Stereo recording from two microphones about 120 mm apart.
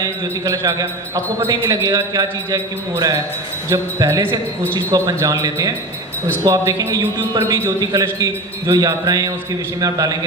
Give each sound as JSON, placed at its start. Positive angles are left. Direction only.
{"t": 0.0, "sound": "a man's voice", "side_deg": -30}